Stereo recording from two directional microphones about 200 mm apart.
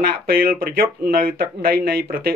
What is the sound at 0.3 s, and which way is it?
Speech, 50° right (ahead or behind).